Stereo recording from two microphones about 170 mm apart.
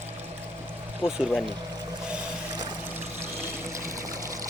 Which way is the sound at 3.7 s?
15° right (ahead or behind).